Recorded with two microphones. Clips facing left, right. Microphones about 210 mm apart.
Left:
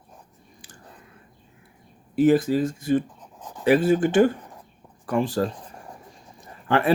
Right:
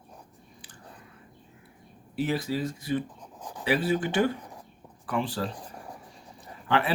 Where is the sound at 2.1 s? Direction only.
50° left (ahead or behind).